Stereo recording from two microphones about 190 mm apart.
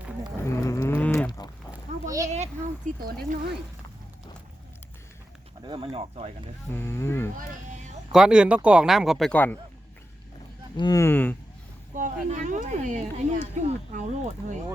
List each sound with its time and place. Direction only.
0.4 s cattle: 15° left (ahead or behind)
2.0 s a sound: 15° right (ahead or behind)
2.3 s a sound: 35° right (ahead or behind)
5.6 s speech: 25° right (ahead or behind)
6.7 s speech: 15° left (ahead or behind)
7.3 s speech: 40° right (ahead or behind)
8.1 s speech: 5° right (ahead or behind)
10.8 s speech: 20° left (ahead or behind)
11.9 s speech: 40° right (ahead or behind)